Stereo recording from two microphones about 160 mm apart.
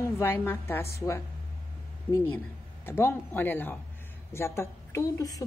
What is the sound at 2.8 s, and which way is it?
A woman's voice, 15° left (ahead or behind).